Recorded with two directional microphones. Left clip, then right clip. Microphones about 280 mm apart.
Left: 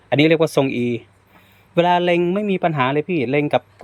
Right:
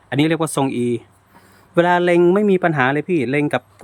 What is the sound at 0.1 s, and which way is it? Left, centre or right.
Speech, centre.